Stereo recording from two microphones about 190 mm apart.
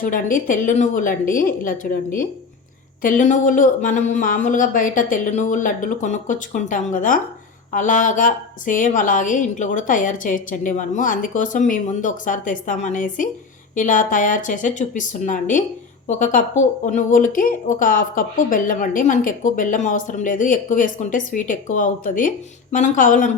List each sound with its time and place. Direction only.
0.0 s speech: 45° left (ahead or behind)
3.0 s speech: 45° left (ahead or behind)